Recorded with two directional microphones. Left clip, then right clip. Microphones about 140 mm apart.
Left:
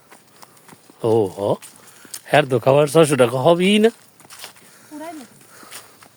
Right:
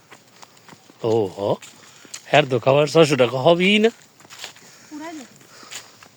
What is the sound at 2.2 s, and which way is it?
Speech, 40° left (ahead or behind).